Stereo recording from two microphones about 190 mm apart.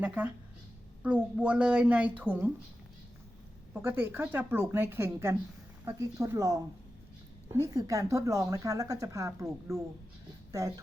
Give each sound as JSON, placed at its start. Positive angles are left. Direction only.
{"t": 0.0, "sound": "speech", "side_deg": -10}
{"t": 3.8, "sound": "speech", "side_deg": -10}